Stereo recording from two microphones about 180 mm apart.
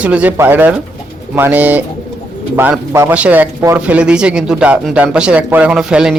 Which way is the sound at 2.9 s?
10° right (ahead or behind).